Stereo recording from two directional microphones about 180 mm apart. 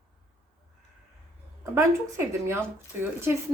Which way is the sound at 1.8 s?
15° right (ahead or behind).